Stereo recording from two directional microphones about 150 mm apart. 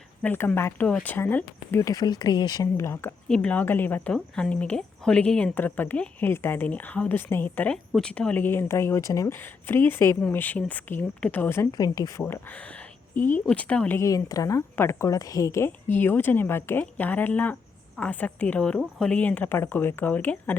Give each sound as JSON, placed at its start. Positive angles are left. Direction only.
{"t": 0.2, "sound": "speech", "side_deg": 15}
{"t": 13.5, "sound": "speech", "side_deg": 10}